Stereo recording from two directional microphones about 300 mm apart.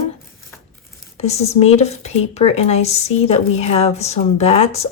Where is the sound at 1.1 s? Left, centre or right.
Left.